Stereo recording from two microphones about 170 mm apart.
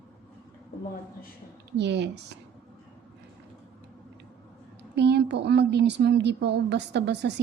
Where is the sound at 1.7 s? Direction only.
90° right.